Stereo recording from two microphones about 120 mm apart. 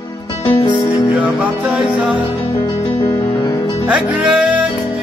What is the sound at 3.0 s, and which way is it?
Music, 25° left (ahead or behind).